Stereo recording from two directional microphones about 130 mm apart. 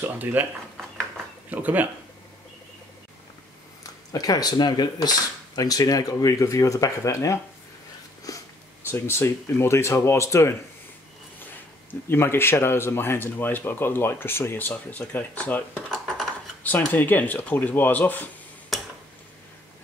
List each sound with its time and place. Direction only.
0.0 s speech: 15° right (ahead or behind)
1.5 s speech: 15° right (ahead or behind)
4.1 s speech: 30° left (ahead or behind)
8.3 s sniff: 25° left (ahead or behind)
8.9 s speech: 20° left (ahead or behind)
12.1 s speech: 20° left (ahead or behind)
18.7 s tick-tock: centre (ahead or behind)